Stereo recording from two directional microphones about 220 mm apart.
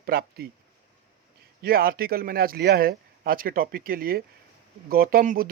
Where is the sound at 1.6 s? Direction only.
40° right (ahead or behind).